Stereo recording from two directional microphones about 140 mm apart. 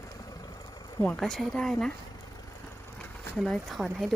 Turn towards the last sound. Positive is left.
turn(degrees=0)  # may be behind; listen again after turning